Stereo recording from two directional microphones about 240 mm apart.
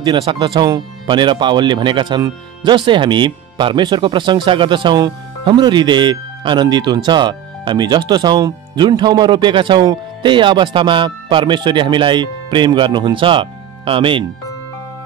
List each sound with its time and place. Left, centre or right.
0.0 s speech: centre